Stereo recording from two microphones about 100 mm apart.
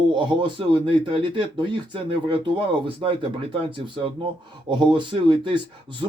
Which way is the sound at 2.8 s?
60° right (ahead or behind).